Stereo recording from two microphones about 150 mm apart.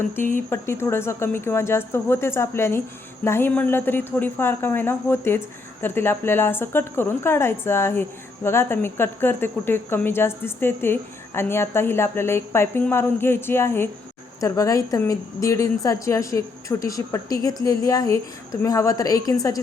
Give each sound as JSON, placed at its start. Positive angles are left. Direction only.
{"t": 0.3, "sound": "a woman's voice", "side_deg": 15}